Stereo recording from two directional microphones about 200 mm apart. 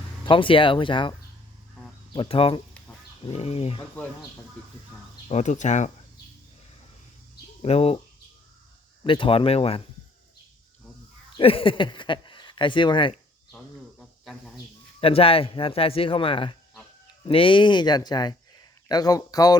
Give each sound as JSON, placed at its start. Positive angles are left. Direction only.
{"t": 0.3, "sound": "speech", "side_deg": 25}
{"t": 2.1, "sound": "speech", "side_deg": 25}
{"t": 5.3, "sound": "speech", "side_deg": 35}
{"t": 7.6, "sound": "speech", "side_deg": 30}
{"t": 9.0, "sound": "speech", "side_deg": 25}
{"t": 11.3, "sound": "speech", "side_deg": 25}
{"t": 14.0, "sound": "cricket", "side_deg": 0}
{"t": 15.0, "sound": "speech", "side_deg": 30}